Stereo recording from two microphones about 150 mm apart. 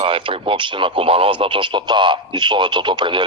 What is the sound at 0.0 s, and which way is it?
A man's voice, 35° right (ahead or behind).